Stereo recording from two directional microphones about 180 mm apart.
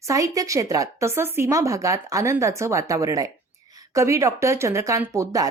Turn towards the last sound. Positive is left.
turn(degrees=-15)  # may be behind; listen again after turning